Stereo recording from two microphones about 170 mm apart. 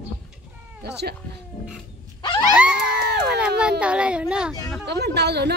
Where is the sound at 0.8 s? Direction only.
75° right (ahead or behind).